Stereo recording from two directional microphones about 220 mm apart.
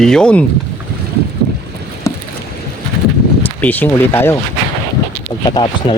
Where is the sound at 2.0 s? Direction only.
15° left (ahead or behind).